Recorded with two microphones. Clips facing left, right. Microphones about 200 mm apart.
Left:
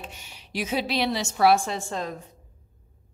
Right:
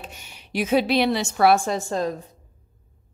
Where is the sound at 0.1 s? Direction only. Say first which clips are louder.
Right 5 dB; 55° right (ahead or behind).